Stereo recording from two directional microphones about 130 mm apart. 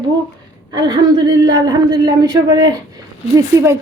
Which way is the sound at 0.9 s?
30° right (ahead or behind).